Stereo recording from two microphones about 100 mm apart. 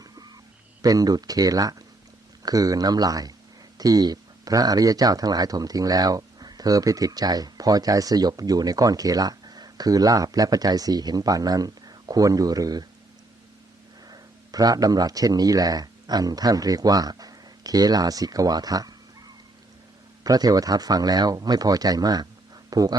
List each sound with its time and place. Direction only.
0.0 s a sound: 40° right (ahead or behind)
0.8 s speech: 40° right (ahead or behind)
14.1 s speech: 40° right (ahead or behind)
20.2 s speech: 40° right (ahead or behind)